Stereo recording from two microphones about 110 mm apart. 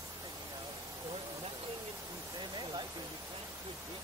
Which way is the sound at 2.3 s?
45° right (ahead or behind).